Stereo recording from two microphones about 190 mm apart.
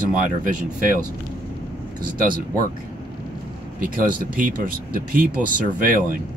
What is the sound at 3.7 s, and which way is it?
Speech, 45° right (ahead or behind).